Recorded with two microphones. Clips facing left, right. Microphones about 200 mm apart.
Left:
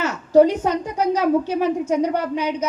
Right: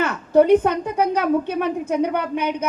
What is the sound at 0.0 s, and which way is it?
A woman's voice, 55° right (ahead or behind).